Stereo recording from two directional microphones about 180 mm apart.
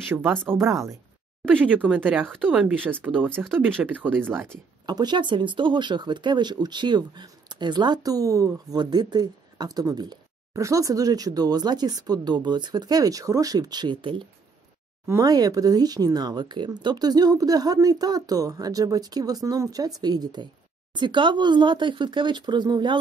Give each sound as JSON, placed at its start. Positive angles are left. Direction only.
{"t": 0.1, "sound": "speech", "side_deg": -15}
{"t": 4.8, "sound": "speech", "side_deg": -25}